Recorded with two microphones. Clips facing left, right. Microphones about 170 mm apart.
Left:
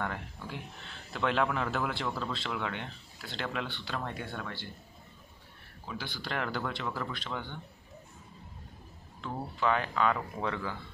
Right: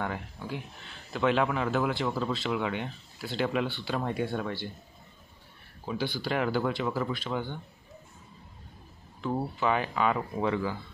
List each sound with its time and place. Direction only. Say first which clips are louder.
0.0 s speech: right 3 dB; 5° right (ahead or behind)
5.9 s speech: right 8 dB; 15° right (ahead or behind)
9.2 s speech: right 3 dB; 10° right (ahead or behind)